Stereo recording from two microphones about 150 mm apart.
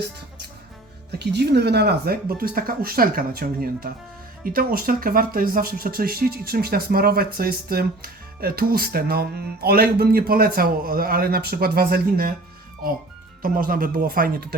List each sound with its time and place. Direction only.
1.2 s speech: 90° right
13.4 s speech: 70° right (ahead or behind)